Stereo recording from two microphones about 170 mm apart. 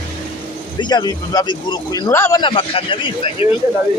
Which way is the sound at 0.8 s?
25° left (ahead or behind).